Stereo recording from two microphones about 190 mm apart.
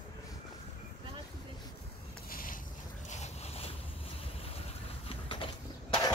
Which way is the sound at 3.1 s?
35° left (ahead or behind).